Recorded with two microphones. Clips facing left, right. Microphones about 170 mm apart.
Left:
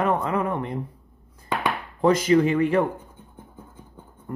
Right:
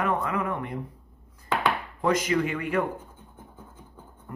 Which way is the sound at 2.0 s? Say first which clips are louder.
Left 6 dB; 30° left (ahead or behind).